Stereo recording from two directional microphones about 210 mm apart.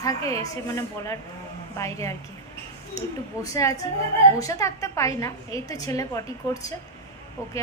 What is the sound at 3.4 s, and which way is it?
A woman's voice, 15° left (ahead or behind).